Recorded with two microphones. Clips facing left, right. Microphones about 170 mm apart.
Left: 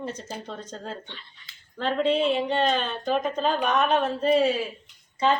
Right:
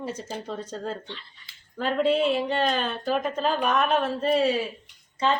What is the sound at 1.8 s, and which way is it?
A woman's voice, 5° right (ahead or behind).